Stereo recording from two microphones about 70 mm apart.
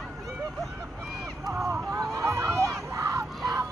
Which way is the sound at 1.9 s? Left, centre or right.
Right.